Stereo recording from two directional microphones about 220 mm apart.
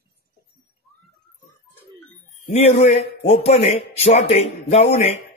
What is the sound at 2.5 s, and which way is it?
A man's voice, 30° left (ahead or behind).